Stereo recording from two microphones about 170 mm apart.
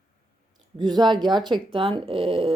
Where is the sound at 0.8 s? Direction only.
25° right (ahead or behind).